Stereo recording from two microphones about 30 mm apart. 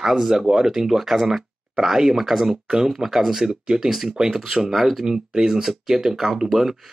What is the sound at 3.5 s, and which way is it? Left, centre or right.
Speech, right.